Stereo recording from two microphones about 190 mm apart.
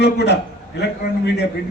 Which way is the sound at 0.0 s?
65° left (ahead or behind).